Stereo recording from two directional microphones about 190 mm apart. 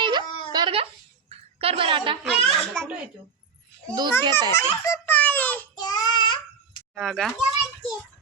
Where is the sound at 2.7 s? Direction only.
5° left (ahead or behind).